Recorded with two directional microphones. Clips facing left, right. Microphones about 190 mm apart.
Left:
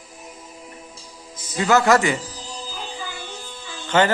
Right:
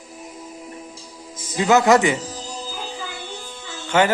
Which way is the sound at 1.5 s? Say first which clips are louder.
Right 2 dB; 20° right (ahead or behind).